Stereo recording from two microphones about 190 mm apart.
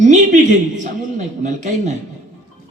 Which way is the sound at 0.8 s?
40° right (ahead or behind).